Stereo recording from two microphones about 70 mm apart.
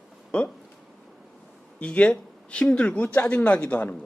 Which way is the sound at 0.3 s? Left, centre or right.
Centre.